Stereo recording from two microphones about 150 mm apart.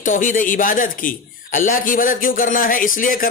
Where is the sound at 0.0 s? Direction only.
60° left (ahead or behind).